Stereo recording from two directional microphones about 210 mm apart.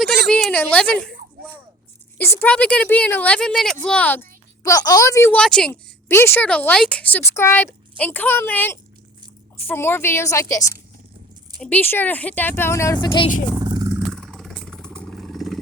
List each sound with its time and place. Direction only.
0.3 s speech: 5° left (ahead or behind)
2.1 s speech: 10° left (ahead or behind)
11.6 s speech: 10° left (ahead or behind)
13.6 s vehicle: 20° right (ahead or behind)
13.9 s vehicle: centre (ahead or behind)